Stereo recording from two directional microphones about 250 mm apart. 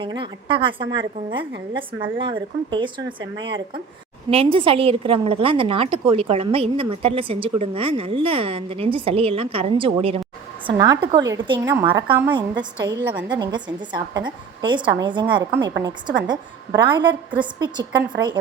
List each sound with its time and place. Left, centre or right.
0.0 s a woman's voice: centre